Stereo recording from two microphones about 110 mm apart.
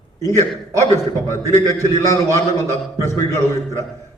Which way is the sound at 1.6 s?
30° right (ahead or behind).